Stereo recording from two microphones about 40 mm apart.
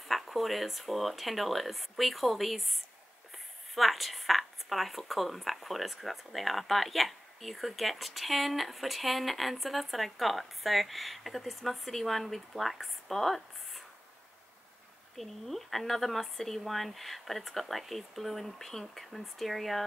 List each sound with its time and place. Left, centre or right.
0.1 s speech: centre
15.1 s speech: centre